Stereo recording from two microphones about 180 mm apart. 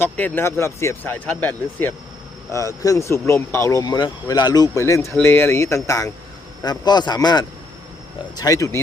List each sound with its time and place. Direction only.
0.0 s a man's voice: 10° left (ahead or behind)